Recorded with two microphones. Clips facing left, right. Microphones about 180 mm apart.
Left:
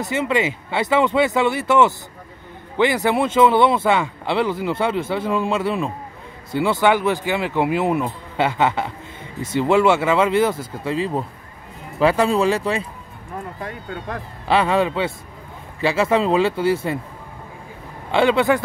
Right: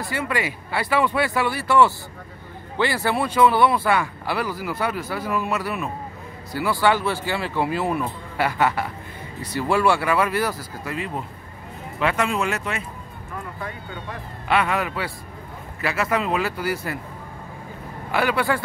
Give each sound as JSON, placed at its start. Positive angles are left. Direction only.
{"t": 0.0, "sound": "speech", "side_deg": 20}
{"t": 14.5, "sound": "speech", "side_deg": 30}
{"t": 18.1, "sound": "speech", "side_deg": 25}